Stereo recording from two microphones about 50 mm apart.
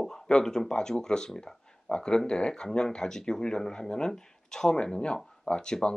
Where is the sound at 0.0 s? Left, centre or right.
Centre.